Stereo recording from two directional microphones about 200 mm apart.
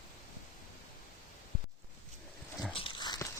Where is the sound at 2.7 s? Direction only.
25° left (ahead or behind).